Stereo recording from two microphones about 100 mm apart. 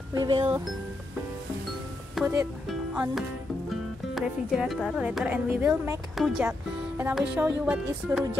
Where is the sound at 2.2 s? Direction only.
Centre (ahead or behind).